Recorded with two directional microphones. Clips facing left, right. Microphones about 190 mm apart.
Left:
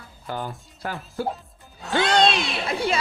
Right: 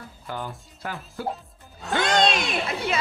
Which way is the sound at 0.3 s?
40° left (ahead or behind).